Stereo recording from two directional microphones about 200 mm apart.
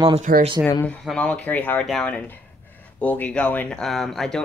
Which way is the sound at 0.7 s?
10° left (ahead or behind).